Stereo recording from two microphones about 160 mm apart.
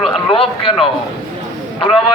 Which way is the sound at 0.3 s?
35° left (ahead or behind).